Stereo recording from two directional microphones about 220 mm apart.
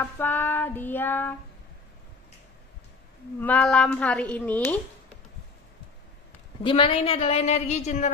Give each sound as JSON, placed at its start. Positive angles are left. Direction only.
{"t": 0.0, "sound": "a woman's voice", "side_deg": 10}
{"t": 3.3, "sound": "a woman's voice", "side_deg": 5}
{"t": 6.6, "sound": "a woman's voice", "side_deg": 25}